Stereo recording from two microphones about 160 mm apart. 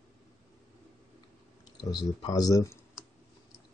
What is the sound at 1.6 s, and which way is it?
Speech, 25° left (ahead or behind).